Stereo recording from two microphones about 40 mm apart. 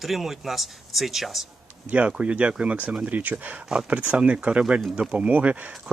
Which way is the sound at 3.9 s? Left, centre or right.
Right.